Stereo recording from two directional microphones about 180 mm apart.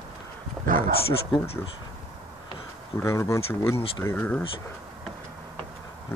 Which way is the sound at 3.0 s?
15° left (ahead or behind).